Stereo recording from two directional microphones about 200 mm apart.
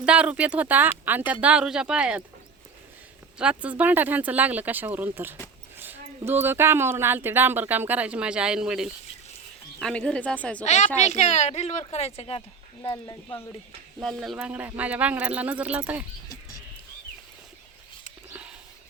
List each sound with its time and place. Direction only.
0.0 s a woman's voice: 5° right (ahead or behind)
3.3 s a woman's voice: 5° right (ahead or behind)
10.7 s speech: 35° left (ahead or behind)
12.9 s speech: 10° left (ahead or behind)
14.0 s a woman's voice: centre (ahead or behind)